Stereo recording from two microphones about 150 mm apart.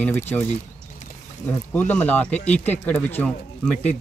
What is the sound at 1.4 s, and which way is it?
Speech, 10° left (ahead or behind).